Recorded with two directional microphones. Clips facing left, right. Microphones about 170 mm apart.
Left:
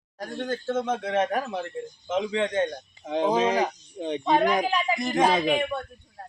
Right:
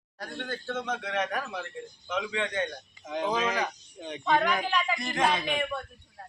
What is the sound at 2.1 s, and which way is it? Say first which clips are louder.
Speech: left 6 dB; 30° left (ahead or behind).